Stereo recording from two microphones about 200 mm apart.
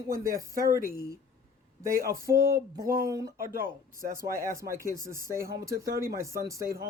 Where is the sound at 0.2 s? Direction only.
15° right (ahead or behind).